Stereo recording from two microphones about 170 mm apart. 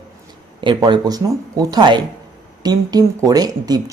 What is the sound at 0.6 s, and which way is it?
A man's voice, 25° right (ahead or behind).